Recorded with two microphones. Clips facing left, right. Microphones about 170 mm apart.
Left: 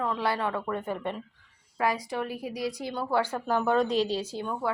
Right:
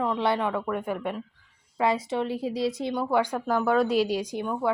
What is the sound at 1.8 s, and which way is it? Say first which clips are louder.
Speech: right 3 dB; 25° right (ahead or behind).